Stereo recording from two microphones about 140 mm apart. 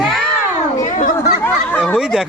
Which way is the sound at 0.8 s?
65° left (ahead or behind).